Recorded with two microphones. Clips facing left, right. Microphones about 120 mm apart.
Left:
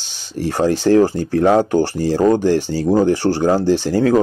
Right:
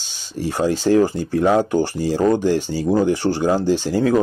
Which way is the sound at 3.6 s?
65° left (ahead or behind).